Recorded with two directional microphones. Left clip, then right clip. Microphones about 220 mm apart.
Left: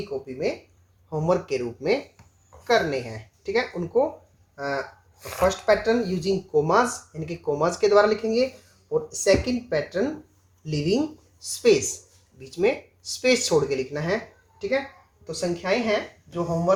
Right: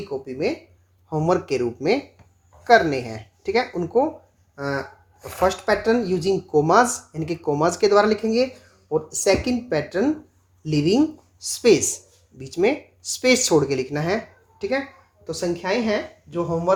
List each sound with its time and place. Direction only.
0.1 s speech: 45° right (ahead or behind)
5.4 s a woman's voice: 40° right (ahead or behind)
15.3 s speech: 40° right (ahead or behind)